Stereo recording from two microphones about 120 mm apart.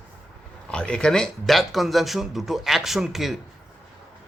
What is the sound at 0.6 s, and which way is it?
Speech, 10° left (ahead or behind).